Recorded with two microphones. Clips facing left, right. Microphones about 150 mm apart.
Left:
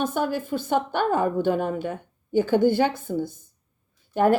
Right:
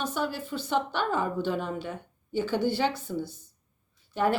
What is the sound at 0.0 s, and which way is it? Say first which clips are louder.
A woman's voice: left 6 dB; 50° left (ahead or behind).